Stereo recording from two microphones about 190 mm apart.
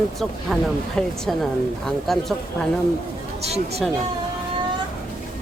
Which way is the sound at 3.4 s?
35° right (ahead or behind).